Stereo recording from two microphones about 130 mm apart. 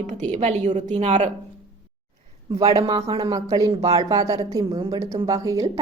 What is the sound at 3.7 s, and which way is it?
Speech, 55° right (ahead or behind).